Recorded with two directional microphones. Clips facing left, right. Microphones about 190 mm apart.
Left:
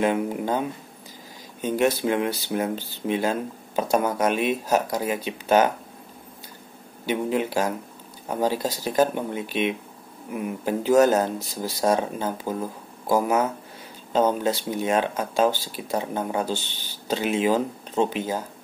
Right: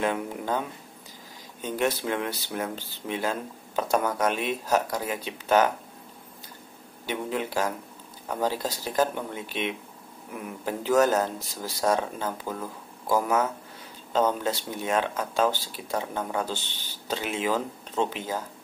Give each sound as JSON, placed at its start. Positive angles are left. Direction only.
{"t": 0.0, "sound": "speech", "side_deg": 15}
{"t": 7.1, "sound": "speech", "side_deg": 15}